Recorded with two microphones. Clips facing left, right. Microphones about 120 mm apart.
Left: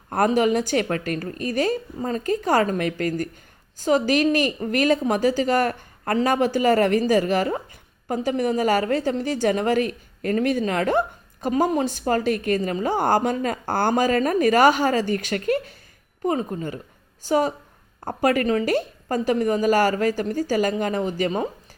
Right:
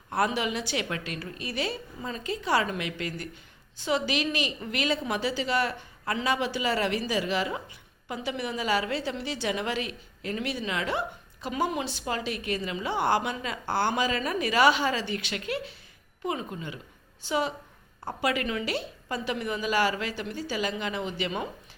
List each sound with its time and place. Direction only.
0.1 s a woman's voice: 45° left (ahead or behind)